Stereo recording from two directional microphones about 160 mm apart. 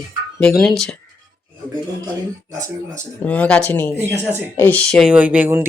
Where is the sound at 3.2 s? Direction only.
10° left (ahead or behind).